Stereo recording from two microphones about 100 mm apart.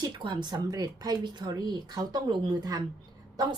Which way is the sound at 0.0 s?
50° right (ahead or behind).